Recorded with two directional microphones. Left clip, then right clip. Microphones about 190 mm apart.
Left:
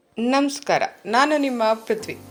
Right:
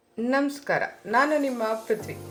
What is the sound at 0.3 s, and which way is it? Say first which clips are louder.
Speech: left 5 dB; 35° left (ahead or behind).